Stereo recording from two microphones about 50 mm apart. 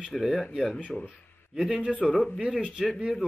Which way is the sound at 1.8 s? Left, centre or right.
Right.